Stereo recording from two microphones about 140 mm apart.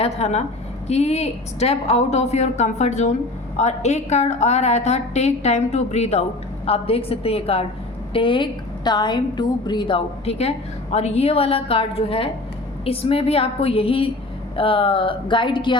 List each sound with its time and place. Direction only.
0.0 s a woman's voice: 50° left (ahead or behind); by 15.7 s 35° left (ahead or behind)